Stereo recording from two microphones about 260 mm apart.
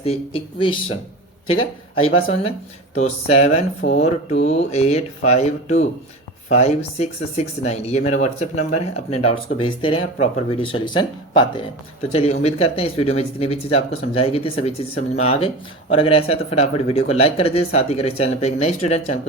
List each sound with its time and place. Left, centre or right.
0.0 s speech: left